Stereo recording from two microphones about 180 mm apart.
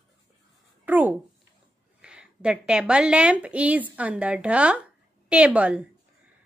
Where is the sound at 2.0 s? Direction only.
5° right (ahead or behind).